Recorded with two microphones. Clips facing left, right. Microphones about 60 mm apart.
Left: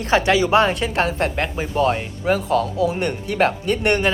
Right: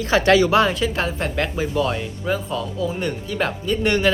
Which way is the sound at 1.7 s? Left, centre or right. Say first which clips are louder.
Left 6 dB; left.